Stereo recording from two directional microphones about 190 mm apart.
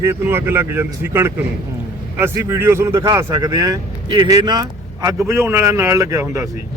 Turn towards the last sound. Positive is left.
turn(degrees=-15)  # may be behind; listen again after turning